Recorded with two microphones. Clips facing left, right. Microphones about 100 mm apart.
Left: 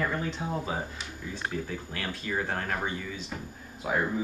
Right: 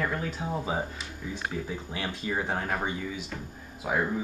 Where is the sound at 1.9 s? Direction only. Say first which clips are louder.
Right 3 dB; 20° right (ahead or behind).